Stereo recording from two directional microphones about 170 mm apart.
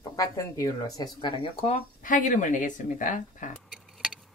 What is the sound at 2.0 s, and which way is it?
Speech, 50° left (ahead or behind).